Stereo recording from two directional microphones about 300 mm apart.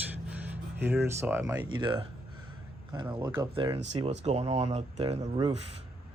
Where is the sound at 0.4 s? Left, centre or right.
Centre; by 5.5 s right.